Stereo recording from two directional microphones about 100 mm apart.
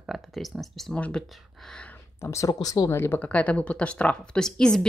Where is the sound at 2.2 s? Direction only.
30° left (ahead or behind).